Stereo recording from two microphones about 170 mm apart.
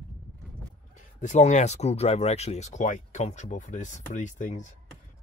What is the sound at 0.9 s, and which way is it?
Speech, 45° left (ahead or behind).